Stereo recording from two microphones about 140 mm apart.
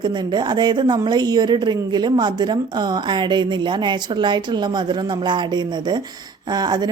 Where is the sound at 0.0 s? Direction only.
30° right (ahead or behind).